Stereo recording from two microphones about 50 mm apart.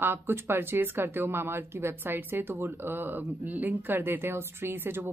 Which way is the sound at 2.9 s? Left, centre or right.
Right.